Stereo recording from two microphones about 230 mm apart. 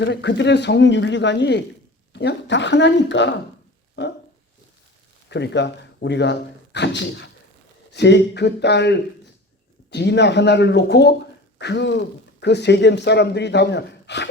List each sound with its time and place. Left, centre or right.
0.0 s speech: left
5.3 s speech: left